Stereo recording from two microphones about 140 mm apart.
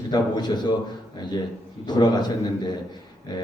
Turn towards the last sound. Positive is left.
turn(degrees=30)  # may be behind; listen again after turning